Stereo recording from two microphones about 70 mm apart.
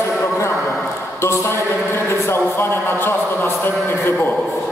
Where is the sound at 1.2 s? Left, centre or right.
Left.